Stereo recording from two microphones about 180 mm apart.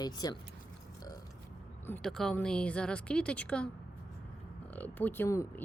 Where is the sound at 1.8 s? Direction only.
5° left (ahead or behind).